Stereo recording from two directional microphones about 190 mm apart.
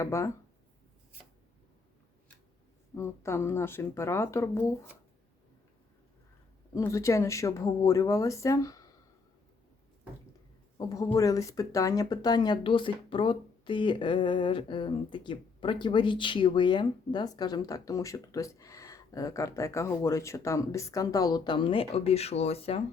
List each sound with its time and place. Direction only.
0.0 s speech: 15° left (ahead or behind)
2.9 s speech: 15° left (ahead or behind)
6.7 s speech: 15° left (ahead or behind)
10.8 s speech: 20° left (ahead or behind)